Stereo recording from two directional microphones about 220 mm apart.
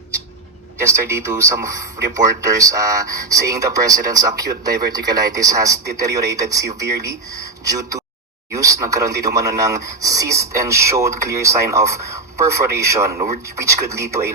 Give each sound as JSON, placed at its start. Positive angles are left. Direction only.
{"t": 0.8, "sound": "speech", "side_deg": -10}